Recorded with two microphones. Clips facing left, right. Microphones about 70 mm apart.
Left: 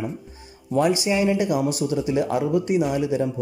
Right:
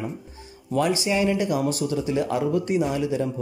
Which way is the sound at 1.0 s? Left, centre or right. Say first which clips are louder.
Left 2 dB; centre.